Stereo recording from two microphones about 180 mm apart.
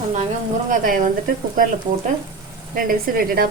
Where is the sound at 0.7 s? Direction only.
50° right (ahead or behind).